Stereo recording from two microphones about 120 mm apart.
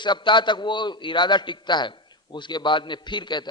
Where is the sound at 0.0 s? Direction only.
40° left (ahead or behind).